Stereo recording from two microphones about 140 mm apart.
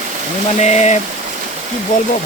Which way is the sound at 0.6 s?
55° left (ahead or behind).